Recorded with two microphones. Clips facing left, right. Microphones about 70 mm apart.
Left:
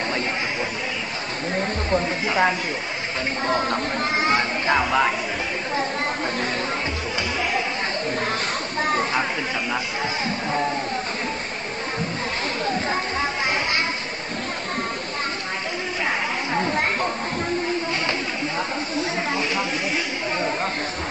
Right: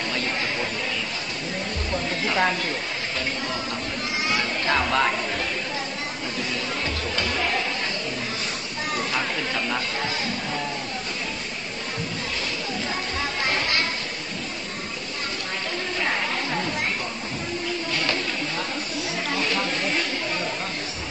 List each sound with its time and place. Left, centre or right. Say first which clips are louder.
1.5 s speech: left 7 dB; left
2.2 s speech: left 1 dB; centre
3.4 s speech: left 7 dB; left
4.6 s speech: left 2 dB; centre
7.2 s chatter: left 1 dB; centre
8.8 s chatter: left 4 dB; left
12.6 s a sound: left 5 dB; left
16.5 s chatter: left 5 dB; left
18.9 s snake: left 3 dB; centre